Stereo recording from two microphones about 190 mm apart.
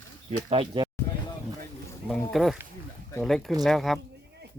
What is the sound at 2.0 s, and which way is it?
Speech, centre (ahead or behind).